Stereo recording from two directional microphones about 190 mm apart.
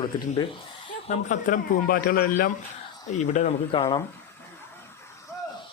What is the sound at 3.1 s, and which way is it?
Speech, 40° left (ahead or behind).